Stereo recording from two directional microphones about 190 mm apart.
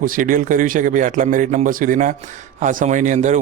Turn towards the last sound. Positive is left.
turn(degrees=-40)  # may be behind; listen again after turning